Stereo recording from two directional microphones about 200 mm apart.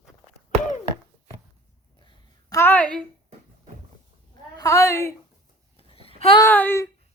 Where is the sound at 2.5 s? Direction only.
10° left (ahead or behind).